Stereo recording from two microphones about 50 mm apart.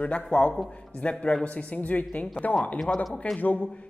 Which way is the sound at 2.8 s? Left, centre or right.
Centre.